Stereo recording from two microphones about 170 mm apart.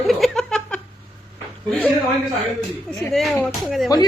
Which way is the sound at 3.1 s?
Centre (ahead or behind).